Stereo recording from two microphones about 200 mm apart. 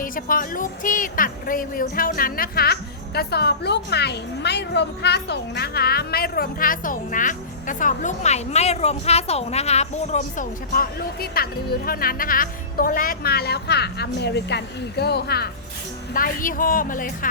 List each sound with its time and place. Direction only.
0.0 s a woman's voice: 45° left (ahead or behind)
10.7 s a woman's voice: 50° left (ahead or behind)